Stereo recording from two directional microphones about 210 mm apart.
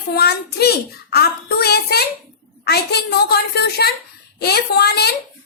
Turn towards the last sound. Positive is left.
turn(degrees=50)  # may be behind; listen again after turning